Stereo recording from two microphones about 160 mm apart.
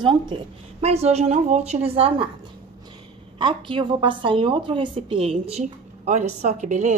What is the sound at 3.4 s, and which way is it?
A woman's voice, 30° right (ahead or behind).